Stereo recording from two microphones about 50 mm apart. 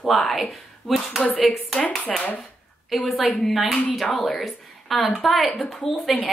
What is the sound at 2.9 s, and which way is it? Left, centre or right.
A woman's voice, centre.